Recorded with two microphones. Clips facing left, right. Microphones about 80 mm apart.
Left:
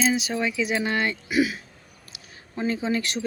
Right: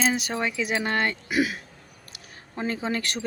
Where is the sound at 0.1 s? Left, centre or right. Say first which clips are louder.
Left 2 dB; right.